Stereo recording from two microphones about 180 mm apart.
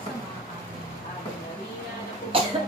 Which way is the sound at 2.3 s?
30° right (ahead or behind).